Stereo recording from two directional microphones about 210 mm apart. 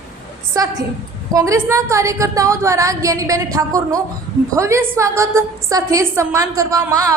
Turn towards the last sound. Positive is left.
turn(degrees=-15)  # may be behind; listen again after turning